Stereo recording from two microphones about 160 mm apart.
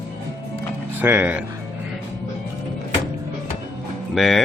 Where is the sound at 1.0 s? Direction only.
10° right (ahead or behind).